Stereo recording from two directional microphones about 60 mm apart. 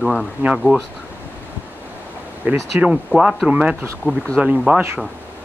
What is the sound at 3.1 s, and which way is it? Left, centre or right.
Speech, left.